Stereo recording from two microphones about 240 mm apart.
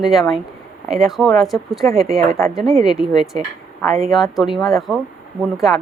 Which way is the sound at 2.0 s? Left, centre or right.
Right.